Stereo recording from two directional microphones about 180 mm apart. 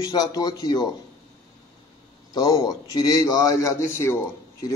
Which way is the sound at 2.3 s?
20° left (ahead or behind).